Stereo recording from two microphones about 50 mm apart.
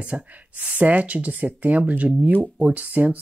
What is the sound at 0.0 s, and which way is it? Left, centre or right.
Speech, right.